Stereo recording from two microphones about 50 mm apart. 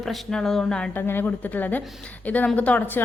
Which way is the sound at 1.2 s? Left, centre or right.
Left.